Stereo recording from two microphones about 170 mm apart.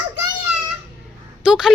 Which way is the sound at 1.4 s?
5° right (ahead or behind).